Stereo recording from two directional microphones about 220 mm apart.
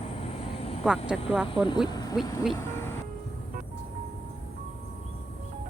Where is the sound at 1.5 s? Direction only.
20° left (ahead or behind).